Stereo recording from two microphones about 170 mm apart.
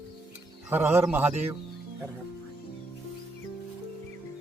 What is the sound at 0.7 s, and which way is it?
Speech, 10° right (ahead or behind).